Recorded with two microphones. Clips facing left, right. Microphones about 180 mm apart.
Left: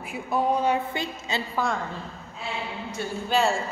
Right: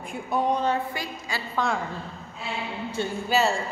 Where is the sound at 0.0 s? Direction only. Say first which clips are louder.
Even; 5° left (ahead or behind).